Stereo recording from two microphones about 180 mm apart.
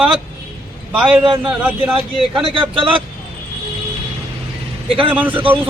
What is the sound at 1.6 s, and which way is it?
Speech, 10° right (ahead or behind).